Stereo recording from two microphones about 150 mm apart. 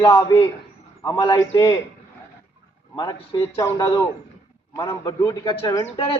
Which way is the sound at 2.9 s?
30° left (ahead or behind).